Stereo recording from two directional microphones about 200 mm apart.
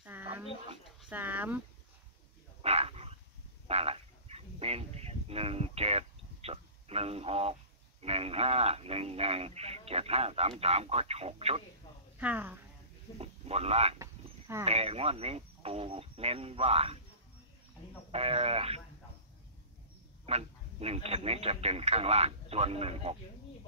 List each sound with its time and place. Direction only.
0.0 s a sound: 10° right (ahead or behind)
1.0 s speech: 10° right (ahead or behind)
2.6 s dog: 30° right (ahead or behind)
3.6 s frog: 30° right (ahead or behind)
5.3 s speech: 30° right (ahead or behind)
12.2 s speech: 10° right (ahead or behind)
13.2 s speech: 30° right (ahead or behind)
18.1 s speech: 30° right (ahead or behind)
20.2 s speech: 30° right (ahead or behind)